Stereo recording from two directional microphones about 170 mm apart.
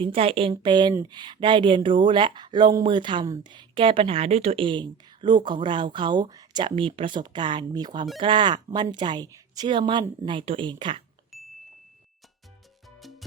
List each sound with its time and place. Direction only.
0.0 s speech: 35° right (ahead or behind)
11.3 s a sound: centre (ahead or behind)
13.0 s music: centre (ahead or behind)